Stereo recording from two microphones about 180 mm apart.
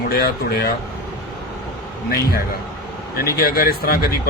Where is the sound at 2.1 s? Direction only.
55° left (ahead or behind).